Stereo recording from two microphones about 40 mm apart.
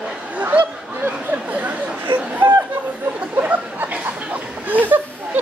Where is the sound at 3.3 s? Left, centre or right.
Right.